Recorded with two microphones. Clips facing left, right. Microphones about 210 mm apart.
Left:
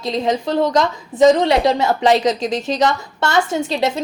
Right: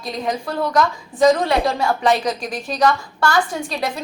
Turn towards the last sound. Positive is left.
turn(degrees=25)  # may be behind; listen again after turning